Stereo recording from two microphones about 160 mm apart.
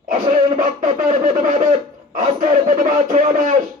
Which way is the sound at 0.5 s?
55° right (ahead or behind).